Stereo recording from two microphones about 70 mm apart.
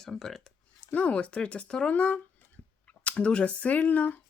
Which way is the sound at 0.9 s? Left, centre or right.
Centre.